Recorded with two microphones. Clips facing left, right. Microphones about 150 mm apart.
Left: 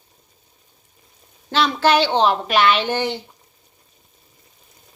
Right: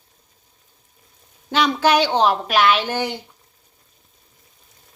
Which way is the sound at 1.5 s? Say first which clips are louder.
Even; 10° right (ahead or behind).